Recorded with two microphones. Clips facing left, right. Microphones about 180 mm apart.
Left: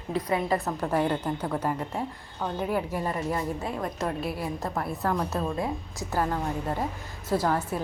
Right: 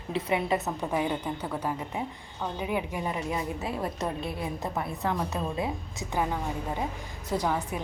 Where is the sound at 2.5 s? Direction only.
5° right (ahead or behind).